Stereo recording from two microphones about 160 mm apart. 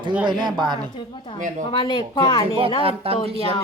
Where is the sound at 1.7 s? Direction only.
30° left (ahead or behind).